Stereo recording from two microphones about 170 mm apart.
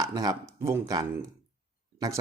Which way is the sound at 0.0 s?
25° right (ahead or behind).